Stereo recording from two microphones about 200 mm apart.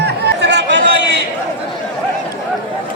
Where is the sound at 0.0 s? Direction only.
55° right (ahead or behind).